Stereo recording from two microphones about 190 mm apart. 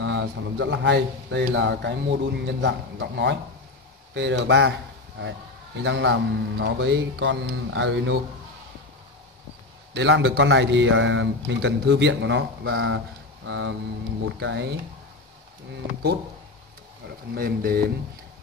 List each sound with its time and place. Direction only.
0.0 s a man's voice: 75° right (ahead or behind)
5.9 s a man's voice: 70° right (ahead or behind)
9.9 s a man's voice: 70° right (ahead or behind)
17.3 s speech: 50° right (ahead or behind)